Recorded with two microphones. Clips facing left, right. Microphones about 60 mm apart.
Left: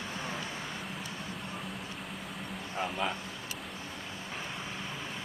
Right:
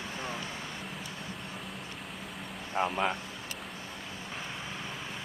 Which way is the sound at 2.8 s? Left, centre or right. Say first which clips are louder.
Right 5 dB; right.